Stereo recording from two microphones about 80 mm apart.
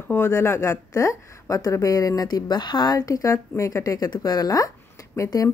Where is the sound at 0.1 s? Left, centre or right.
Left.